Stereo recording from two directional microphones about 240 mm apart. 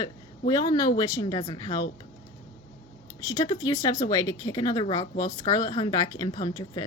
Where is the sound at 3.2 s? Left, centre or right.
Centre.